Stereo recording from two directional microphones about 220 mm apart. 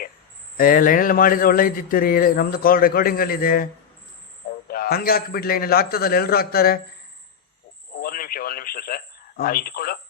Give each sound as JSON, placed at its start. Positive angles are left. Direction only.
{"t": 0.5, "sound": "a man's voice", "side_deg": 40}
{"t": 4.7, "sound": "a man's voice", "side_deg": 45}
{"t": 7.9, "sound": "speech", "side_deg": 40}